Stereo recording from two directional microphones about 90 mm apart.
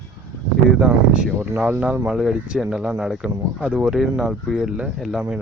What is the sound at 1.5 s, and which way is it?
Speech, 20° right (ahead or behind).